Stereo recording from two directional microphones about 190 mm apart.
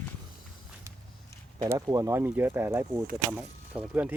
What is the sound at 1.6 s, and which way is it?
Speech, 20° right (ahead or behind).